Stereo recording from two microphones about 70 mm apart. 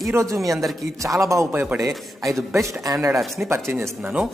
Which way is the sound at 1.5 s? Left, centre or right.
Right.